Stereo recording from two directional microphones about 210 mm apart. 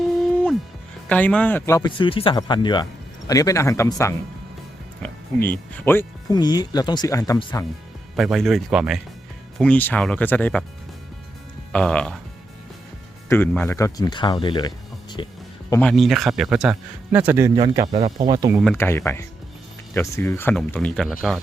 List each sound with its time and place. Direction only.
1.0 s speech: 5° left (ahead or behind)
8.1 s speech: centre (ahead or behind)
11.7 s speech: 5° left (ahead or behind)
13.2 s speech: 10° left (ahead or behind)
15.7 s speech: 5° left (ahead or behind); by 18.6 s 15° right (ahead or behind)
18.6 s speech: 5° left (ahead or behind)